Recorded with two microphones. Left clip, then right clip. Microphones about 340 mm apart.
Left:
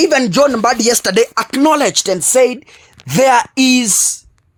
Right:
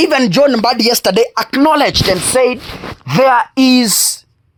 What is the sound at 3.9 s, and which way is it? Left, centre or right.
Speech, right.